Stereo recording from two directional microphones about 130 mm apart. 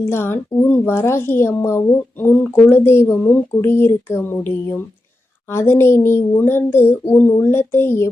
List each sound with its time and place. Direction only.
0.0 s a child's voice: 20° left (ahead or behind)